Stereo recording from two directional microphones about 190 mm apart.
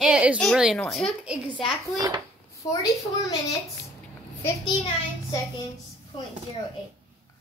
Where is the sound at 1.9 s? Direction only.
20° right (ahead or behind).